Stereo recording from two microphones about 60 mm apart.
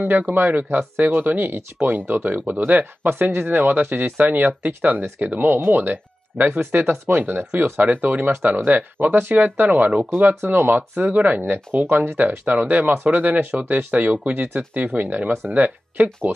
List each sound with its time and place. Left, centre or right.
0.3 s speech: right
12.3 s speech: right